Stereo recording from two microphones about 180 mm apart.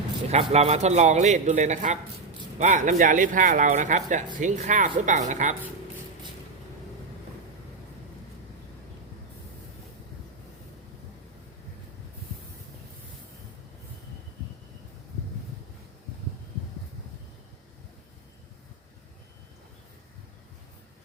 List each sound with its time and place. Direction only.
0.3 s a man's voice: 35° right (ahead or behind)